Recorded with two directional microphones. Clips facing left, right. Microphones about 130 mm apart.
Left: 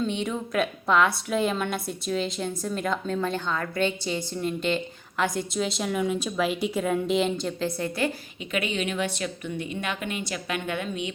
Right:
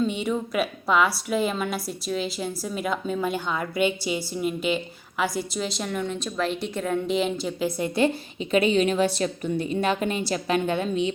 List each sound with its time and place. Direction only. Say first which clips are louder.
0.0 s a woman's voice: right 3 dB; 5° right (ahead or behind)
7.8 s a woman's voice: right 8 dB; 25° right (ahead or behind)
8.5 s a woman's voice: right 7 dB; 35° right (ahead or behind)